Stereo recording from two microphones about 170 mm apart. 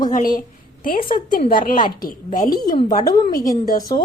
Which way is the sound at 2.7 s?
30° left (ahead or behind).